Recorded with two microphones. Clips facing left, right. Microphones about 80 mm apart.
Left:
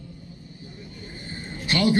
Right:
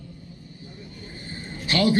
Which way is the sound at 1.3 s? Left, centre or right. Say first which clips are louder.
Even; left.